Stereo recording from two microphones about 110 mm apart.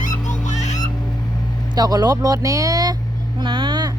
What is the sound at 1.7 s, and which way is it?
Speech, 35° right (ahead or behind).